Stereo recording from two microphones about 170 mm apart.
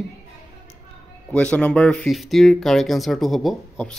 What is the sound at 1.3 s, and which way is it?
Speech, 5° left (ahead or behind).